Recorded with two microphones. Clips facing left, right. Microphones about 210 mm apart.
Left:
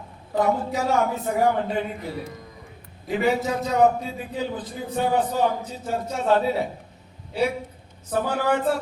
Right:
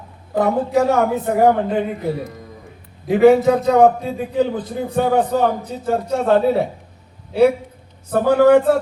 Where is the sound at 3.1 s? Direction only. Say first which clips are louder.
Right 11 dB; 55° right (ahead or behind).